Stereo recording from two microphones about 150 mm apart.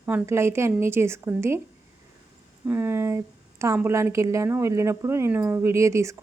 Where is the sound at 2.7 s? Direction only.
15° right (ahead or behind).